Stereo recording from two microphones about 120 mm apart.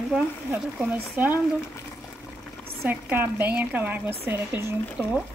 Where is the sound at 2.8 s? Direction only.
15° right (ahead or behind).